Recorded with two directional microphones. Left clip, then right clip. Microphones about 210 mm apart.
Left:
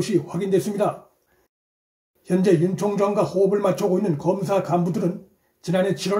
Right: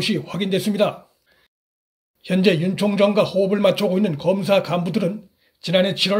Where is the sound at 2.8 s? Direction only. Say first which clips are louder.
Right 4 dB; 50° right (ahead or behind).